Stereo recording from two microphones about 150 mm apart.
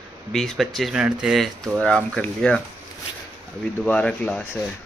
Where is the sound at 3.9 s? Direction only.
10° left (ahead or behind).